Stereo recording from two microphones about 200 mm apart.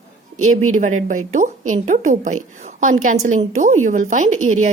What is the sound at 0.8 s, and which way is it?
A woman's voice, 40° right (ahead or behind).